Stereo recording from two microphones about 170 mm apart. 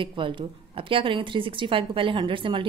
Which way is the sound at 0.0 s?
30° right (ahead or behind).